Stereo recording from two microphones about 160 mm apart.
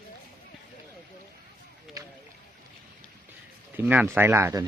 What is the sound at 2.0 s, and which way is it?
Boat, 20° right (ahead or behind).